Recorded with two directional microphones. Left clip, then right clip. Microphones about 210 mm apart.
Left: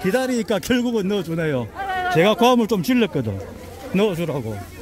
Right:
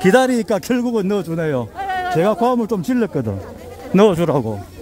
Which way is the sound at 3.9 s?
25° right (ahead or behind).